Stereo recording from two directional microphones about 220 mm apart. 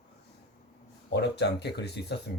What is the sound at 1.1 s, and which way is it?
Speech, 50° left (ahead or behind).